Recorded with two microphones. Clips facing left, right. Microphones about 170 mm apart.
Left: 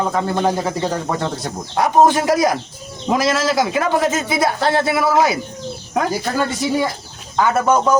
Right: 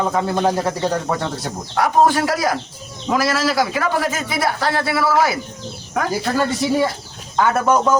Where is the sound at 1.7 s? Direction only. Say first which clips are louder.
Left 2 dB; 20° left (ahead or behind).